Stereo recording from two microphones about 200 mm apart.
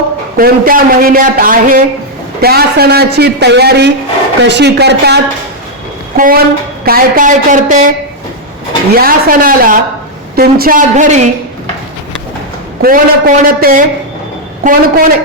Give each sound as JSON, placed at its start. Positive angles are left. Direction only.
{"t": 0.3, "sound": "a man's voice", "side_deg": -45}
{"t": 6.1, "sound": "a man's voice", "side_deg": -45}
{"t": 9.0, "sound": "a man's voice", "side_deg": -45}
{"t": 12.8, "sound": "a man's voice", "side_deg": -45}